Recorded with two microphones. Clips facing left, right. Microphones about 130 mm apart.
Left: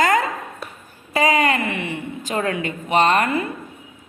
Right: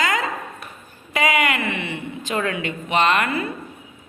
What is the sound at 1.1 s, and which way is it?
Speech, 35° left (ahead or behind).